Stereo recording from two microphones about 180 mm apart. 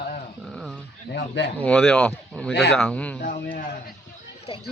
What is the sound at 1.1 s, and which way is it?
Speech, 80° left.